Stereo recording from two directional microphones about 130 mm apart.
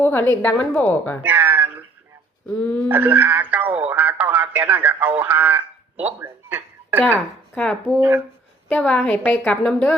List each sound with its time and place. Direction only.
0.0 s a woman's voice: 15° left (ahead or behind)
0.5 s a woman's voice: 5° left (ahead or behind)
1.2 s a sound: 15° right (ahead or behind)
2.5 s a woman's voice: 10° left (ahead or behind)
2.9 s speech: 15° right (ahead or behind)
7.5 s speech: 10° left (ahead or behind)
7.8 s speech: 5° right (ahead or behind)
8.7 s a woman's voice: 10° left (ahead or behind)